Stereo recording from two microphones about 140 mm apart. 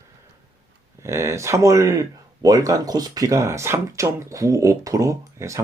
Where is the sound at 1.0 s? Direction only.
20° right (ahead or behind).